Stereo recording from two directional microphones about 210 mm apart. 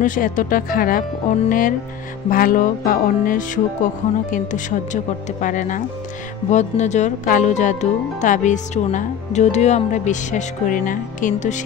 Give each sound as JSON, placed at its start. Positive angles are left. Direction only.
{"t": 0.0, "sound": "speech", "side_deg": 40}